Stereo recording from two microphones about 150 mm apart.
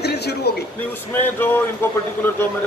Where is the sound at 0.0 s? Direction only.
90° left.